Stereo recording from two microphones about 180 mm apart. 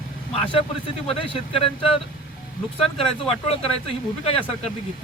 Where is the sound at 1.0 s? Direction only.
30° left (ahead or behind).